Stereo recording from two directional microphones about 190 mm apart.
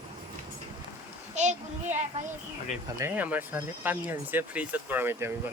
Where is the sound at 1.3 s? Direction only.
40° right (ahead or behind).